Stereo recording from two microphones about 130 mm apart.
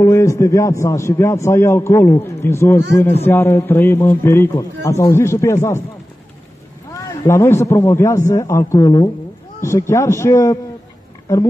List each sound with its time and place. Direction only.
0.0 s a man's voice: 25° left (ahead or behind)
6.9 s a man's voice: 20° left (ahead or behind)